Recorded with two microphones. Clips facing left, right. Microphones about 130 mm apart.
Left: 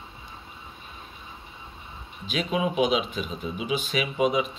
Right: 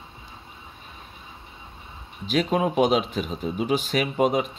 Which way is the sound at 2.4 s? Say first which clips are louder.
Right 3 dB; 45° right (ahead or behind).